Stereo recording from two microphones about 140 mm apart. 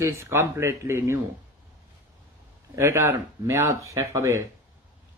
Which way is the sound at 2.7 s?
20° right (ahead or behind).